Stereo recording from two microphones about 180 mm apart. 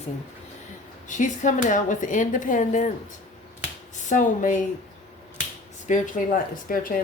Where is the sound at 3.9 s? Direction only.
45° left (ahead or behind).